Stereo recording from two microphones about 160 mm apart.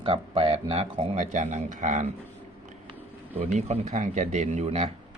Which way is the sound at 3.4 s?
45° right (ahead or behind).